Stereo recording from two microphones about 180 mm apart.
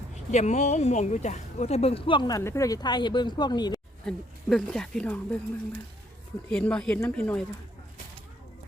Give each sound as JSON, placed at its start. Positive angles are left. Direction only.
{"t": 0.3, "sound": "speech", "side_deg": 40}
{"t": 4.0, "sound": "speech", "side_deg": 5}
{"t": 6.5, "sound": "speech", "side_deg": 5}